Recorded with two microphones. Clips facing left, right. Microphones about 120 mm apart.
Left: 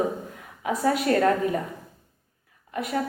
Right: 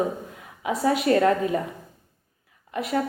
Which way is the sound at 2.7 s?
25° right (ahead or behind).